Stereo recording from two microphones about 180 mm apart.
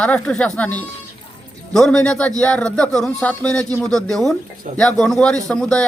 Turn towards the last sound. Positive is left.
turn(degrees=5)  # may be behind; listen again after turning